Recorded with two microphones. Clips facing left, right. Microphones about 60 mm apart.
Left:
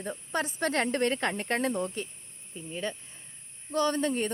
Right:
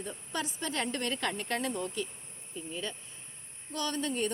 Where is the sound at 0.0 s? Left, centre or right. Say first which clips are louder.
Left 5 dB; left.